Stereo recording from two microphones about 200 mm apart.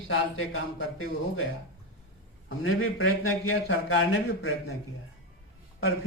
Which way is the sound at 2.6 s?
90° left.